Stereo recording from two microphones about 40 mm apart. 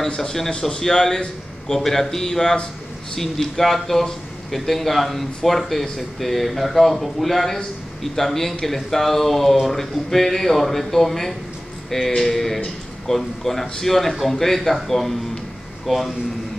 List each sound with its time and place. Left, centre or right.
0.1 s a man's voice: centre